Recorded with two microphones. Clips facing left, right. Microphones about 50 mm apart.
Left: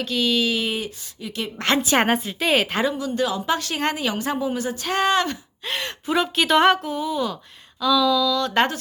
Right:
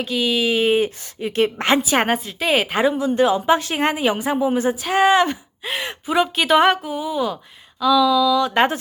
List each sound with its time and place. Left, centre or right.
0.0 s speech: centre; by 1.5 s right
1.8 s a woman's voice: centre
2.8 s speech: right
4.7 s speech: centre